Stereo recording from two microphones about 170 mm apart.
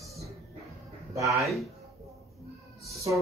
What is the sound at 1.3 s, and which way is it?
Speech, centre (ahead or behind).